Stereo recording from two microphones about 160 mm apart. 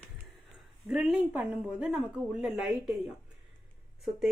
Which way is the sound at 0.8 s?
5° right (ahead or behind).